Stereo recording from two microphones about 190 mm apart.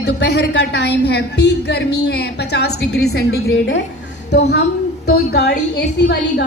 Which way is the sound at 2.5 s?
60° left (ahead or behind).